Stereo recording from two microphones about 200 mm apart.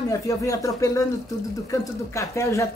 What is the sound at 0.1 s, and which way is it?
A woman's voice, 15° left (ahead or behind).